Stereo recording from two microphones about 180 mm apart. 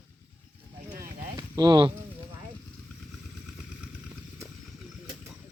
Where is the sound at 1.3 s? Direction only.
20° right (ahead or behind).